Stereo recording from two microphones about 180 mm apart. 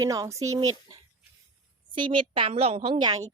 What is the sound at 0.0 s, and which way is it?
Speech, 20° right (ahead or behind).